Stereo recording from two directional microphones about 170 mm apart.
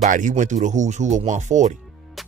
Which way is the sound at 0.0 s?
50° right (ahead or behind).